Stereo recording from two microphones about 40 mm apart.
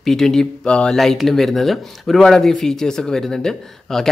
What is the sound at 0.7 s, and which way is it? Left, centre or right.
Speech, left.